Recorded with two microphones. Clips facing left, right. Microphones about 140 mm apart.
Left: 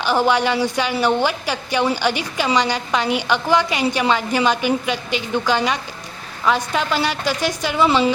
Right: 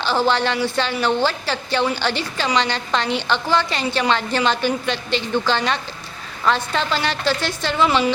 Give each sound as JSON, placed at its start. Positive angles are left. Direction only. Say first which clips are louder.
{"t": 0.0, "sound": "a woman's voice", "louder": "left 2 dB", "side_deg": 10}